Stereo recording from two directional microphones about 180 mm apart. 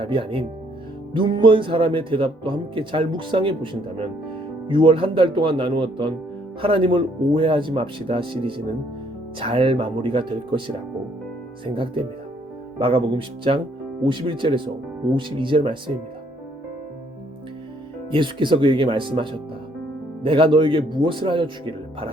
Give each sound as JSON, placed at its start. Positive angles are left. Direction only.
{"t": 0.0, "sound": "speech", "side_deg": -30}
{"t": 11.6, "sound": "speech", "side_deg": -30}
{"t": 18.1, "sound": "speech", "side_deg": -25}